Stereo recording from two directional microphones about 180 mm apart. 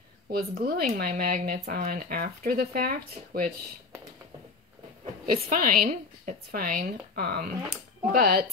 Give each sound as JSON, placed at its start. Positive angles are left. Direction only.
{"t": 0.3, "sound": "speech", "side_deg": -55}
{"t": 5.5, "sound": "speech", "side_deg": -50}